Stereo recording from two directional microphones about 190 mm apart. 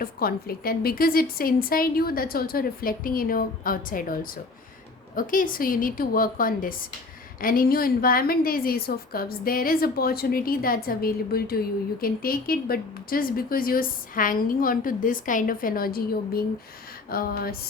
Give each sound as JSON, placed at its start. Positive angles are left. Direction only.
{"t": 0.0, "sound": "a woman's voice", "side_deg": 50}